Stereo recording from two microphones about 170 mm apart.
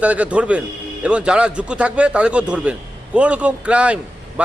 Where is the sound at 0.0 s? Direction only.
10° right (ahead or behind).